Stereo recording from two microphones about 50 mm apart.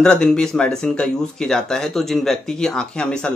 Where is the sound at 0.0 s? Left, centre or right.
Centre.